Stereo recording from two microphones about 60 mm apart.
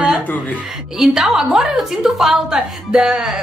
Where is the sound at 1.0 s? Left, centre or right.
Centre.